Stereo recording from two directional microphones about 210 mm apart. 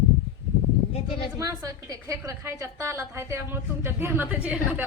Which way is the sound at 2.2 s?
15° right (ahead or behind).